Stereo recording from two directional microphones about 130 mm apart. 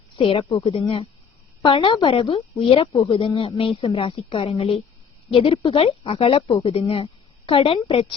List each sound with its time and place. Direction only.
0.2 s speech: 45° left (ahead or behind)